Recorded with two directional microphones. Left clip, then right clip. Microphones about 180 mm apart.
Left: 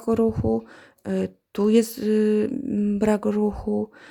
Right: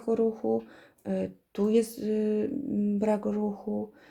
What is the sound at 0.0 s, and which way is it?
Speech, 45° left (ahead or behind).